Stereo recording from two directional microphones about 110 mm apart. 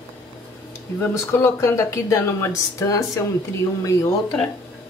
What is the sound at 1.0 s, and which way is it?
Speech, 20° left (ahead or behind).